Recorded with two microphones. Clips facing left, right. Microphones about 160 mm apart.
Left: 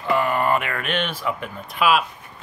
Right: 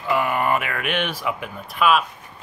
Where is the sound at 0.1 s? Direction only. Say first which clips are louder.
Left 1 dB; 10° right (ahead or behind).